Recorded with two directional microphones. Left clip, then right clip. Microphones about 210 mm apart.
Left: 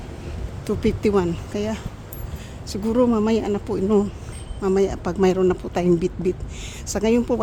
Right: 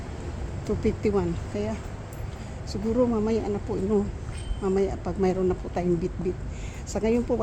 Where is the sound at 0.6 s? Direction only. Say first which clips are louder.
Left 5 dB; 30° left (ahead or behind).